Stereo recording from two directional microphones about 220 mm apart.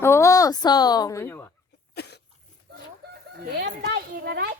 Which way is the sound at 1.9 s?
50° left (ahead or behind).